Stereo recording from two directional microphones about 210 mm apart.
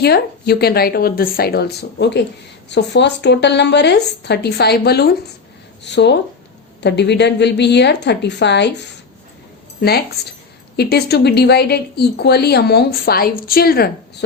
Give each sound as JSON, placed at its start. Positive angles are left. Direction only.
{"t": 0.0, "sound": "a woman's voice", "side_deg": 50}
{"t": 10.8, "sound": "a woman's voice", "side_deg": 50}